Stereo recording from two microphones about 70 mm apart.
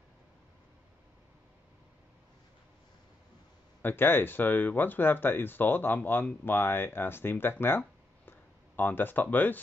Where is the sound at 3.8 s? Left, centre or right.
Left.